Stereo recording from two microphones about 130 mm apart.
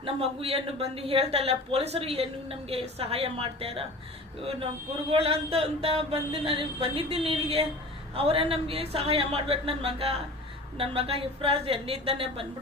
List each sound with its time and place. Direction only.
0.0 s a woman's voice: 50° right (ahead or behind)
5.1 s a woman's voice: 50° right (ahead or behind)